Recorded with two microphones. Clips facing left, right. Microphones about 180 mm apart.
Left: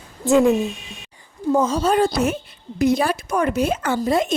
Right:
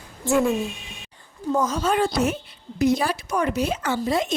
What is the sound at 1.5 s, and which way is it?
Speech, 30° left (ahead or behind).